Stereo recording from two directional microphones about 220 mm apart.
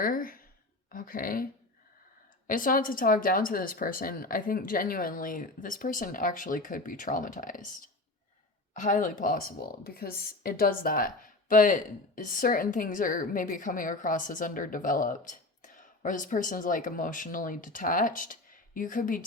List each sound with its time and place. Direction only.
0.0 s speech: 40° left (ahead or behind)
2.5 s speech: 40° left (ahead or behind)
8.7 s speech: 35° left (ahead or behind)